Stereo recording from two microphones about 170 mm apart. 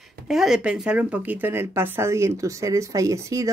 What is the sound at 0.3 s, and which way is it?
A woman's voice, centre (ahead or behind).